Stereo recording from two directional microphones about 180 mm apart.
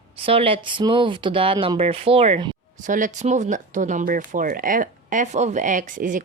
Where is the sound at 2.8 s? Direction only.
45° right (ahead or behind).